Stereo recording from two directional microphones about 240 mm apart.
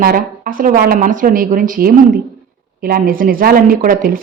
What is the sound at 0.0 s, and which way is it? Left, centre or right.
A woman's voice, right.